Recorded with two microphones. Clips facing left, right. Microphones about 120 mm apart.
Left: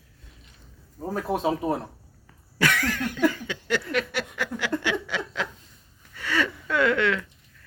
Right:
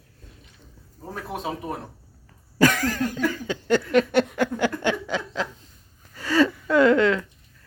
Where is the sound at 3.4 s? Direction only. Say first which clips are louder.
Right 6 dB; 40° right (ahead or behind).